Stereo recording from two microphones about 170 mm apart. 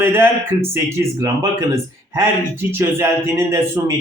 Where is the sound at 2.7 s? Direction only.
15° right (ahead or behind).